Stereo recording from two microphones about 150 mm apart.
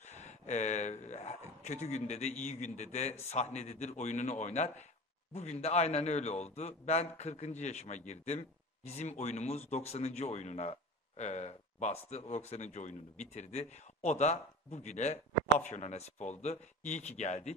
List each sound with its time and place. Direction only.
0.0 s a man's voice: 50° left (ahead or behind)